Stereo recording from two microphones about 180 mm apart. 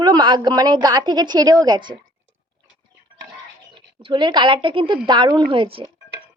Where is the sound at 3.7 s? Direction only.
25° right (ahead or behind).